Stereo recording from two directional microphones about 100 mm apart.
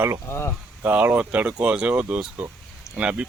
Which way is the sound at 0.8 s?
20° right (ahead or behind).